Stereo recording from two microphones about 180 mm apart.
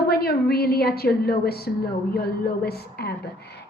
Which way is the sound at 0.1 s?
60° left (ahead or behind).